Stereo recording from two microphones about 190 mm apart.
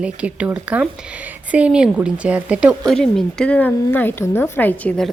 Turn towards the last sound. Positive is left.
turn(degrees=5)  # may be behind; listen again after turning